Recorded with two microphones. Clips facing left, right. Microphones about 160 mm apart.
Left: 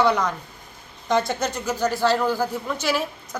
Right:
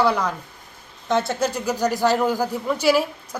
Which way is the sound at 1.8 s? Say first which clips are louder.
Right 1 dB; 15° right (ahead or behind).